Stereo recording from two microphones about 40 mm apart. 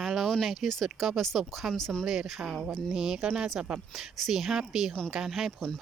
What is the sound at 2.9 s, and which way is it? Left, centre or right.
Speech, centre.